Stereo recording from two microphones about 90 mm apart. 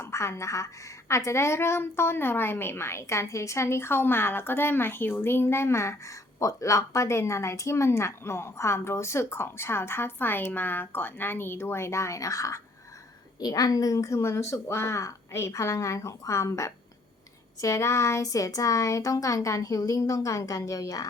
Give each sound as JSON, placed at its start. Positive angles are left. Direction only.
{"t": 0.0, "sound": "a woman's voice", "side_deg": 30}